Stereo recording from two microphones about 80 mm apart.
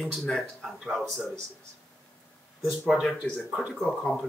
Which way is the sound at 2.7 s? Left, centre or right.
Centre.